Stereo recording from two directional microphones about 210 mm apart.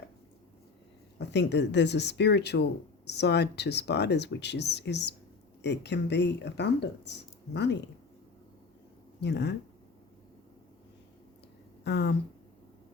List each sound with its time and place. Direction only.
1.2 s speech: 55° left (ahead or behind)
9.2 s speech: 55° left (ahead or behind)
11.8 s speech: 55° left (ahead or behind)